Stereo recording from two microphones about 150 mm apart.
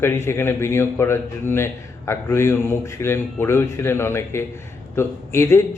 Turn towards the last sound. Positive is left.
turn(degrees=15)  # may be behind; listen again after turning